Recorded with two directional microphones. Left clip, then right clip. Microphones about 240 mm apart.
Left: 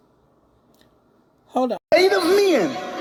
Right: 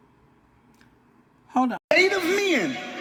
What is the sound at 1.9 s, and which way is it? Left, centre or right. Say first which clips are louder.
Speech: left 5 dB; left.